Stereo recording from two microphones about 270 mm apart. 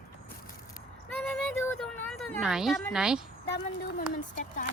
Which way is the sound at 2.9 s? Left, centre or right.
Centre.